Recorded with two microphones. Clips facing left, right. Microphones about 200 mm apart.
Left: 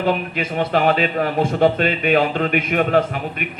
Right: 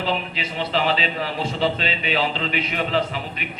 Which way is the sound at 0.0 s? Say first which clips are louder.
Left 5 dB; 55° left (ahead or behind).